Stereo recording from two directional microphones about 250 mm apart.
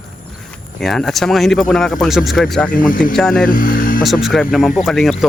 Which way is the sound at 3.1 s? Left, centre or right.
Centre.